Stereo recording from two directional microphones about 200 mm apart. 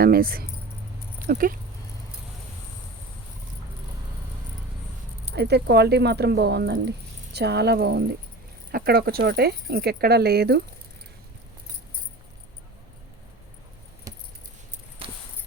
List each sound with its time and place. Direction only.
0.0 s speech: 50° right (ahead or behind)
5.3 s speech: 55° right (ahead or behind)
15.0 s a sound: 25° right (ahead or behind)